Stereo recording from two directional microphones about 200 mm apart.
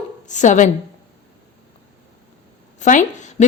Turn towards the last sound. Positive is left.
turn(degrees=35)  # may be behind; listen again after turning